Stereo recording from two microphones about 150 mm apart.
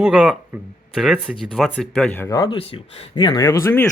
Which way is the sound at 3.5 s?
20° left (ahead or behind).